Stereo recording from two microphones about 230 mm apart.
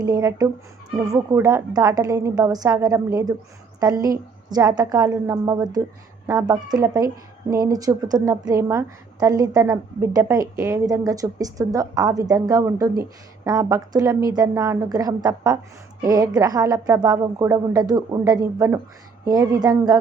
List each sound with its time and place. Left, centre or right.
0.0 s a woman's voice: centre